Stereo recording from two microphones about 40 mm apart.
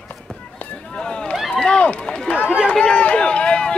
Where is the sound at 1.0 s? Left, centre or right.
Left.